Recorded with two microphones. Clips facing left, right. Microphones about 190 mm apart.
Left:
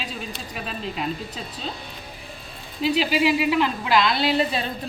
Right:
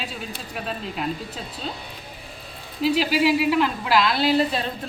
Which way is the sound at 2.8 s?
Centre (ahead or behind).